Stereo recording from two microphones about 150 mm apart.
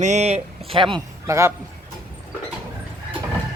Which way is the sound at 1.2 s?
20° right (ahead or behind).